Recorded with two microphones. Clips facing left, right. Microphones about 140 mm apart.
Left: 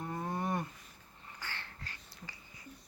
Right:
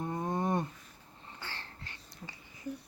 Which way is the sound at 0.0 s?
20° right (ahead or behind).